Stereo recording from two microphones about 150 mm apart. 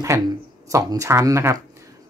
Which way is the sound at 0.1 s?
20° right (ahead or behind).